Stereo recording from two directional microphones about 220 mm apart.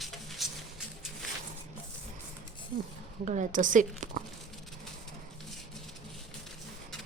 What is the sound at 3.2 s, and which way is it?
Speech, 35° right (ahead or behind).